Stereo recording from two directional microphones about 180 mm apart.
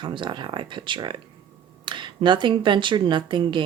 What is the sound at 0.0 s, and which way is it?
Speech, 25° right (ahead or behind).